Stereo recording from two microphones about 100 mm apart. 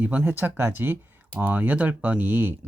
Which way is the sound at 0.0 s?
15° right (ahead or behind).